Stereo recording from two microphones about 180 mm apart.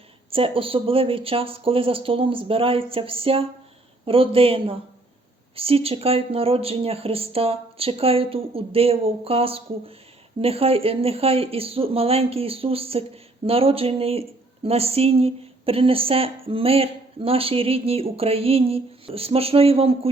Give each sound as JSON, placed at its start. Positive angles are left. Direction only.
{"t": 0.3, "sound": "speech", "side_deg": -30}